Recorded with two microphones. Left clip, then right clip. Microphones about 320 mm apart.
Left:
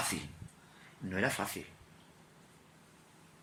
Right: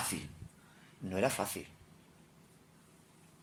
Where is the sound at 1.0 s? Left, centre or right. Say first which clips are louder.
Right 1 dB; centre.